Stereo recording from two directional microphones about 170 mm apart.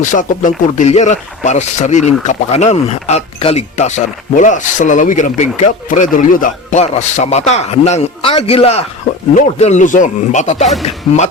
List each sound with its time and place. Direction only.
0.0 s speech: 50° left (ahead or behind)